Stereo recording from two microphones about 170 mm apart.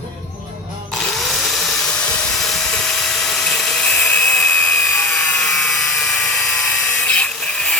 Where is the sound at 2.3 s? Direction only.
Centre (ahead or behind).